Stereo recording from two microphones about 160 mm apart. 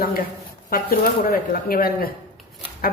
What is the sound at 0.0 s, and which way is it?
A woman's voice, 65° left (ahead or behind).